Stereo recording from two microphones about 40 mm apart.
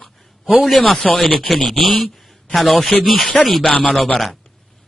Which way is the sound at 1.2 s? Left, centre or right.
Centre.